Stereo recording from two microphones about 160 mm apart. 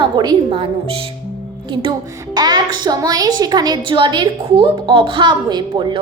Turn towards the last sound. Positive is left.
turn(degrees=-30)  # may be behind; listen again after turning